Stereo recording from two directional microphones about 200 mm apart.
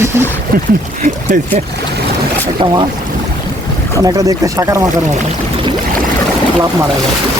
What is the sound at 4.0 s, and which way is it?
Speech, 20° right (ahead or behind).